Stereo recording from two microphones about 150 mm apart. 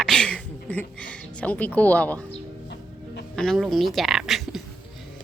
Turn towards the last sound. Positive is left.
turn(degrees=0)  # may be behind; listen again after turning